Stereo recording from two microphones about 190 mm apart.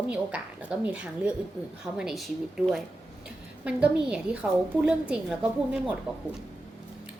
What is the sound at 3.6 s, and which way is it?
A woman's voice, 5° right (ahead or behind).